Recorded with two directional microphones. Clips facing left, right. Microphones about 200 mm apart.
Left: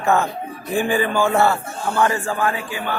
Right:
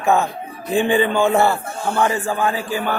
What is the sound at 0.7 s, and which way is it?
A man's voice, 25° right (ahead or behind).